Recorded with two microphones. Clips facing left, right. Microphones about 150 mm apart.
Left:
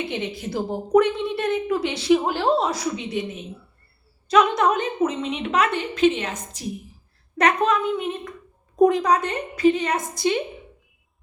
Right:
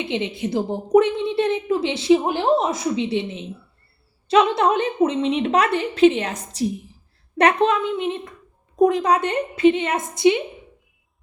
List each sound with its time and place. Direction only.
0.0 s a woman's voice: 20° right (ahead or behind)
8.7 s a woman's voice: centre (ahead or behind)
9.0 s a woman's voice: 30° right (ahead or behind)